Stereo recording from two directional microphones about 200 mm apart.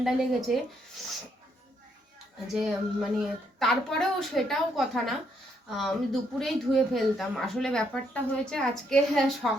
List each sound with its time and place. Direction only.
0.0 s speech: centre (ahead or behind)
2.6 s speech: centre (ahead or behind)